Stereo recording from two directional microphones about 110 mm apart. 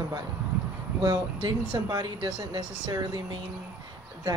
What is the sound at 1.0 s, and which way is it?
Speech, 40° right (ahead or behind).